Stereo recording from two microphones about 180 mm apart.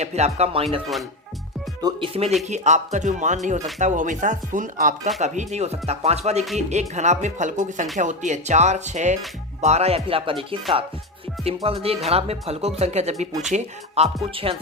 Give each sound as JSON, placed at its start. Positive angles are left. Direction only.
{"t": 0.0, "sound": "speech", "side_deg": -35}
{"t": 1.8, "sound": "speech", "side_deg": -30}
{"t": 2.5, "sound": "speech", "side_deg": -40}